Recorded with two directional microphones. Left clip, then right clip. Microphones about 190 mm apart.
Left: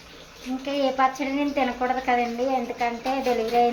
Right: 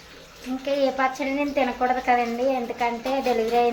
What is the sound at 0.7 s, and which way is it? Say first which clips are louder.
Speech: even; 10° right (ahead or behind).